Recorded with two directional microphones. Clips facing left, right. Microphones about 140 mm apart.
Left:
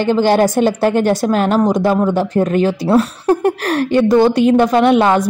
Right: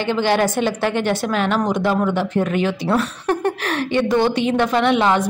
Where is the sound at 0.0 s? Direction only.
40° left (ahead or behind).